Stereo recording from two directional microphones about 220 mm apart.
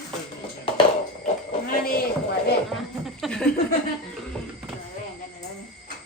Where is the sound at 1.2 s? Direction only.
40° left (ahead or behind).